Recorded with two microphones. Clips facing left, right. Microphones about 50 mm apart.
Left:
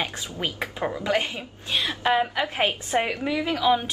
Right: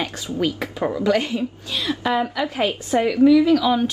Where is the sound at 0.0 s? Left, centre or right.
Left.